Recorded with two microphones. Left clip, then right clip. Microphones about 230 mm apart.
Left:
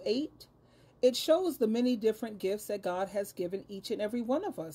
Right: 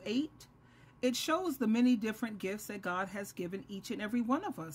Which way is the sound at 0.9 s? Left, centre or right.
Centre.